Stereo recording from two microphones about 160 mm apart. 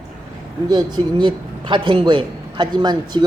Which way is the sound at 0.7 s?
25° right (ahead or behind).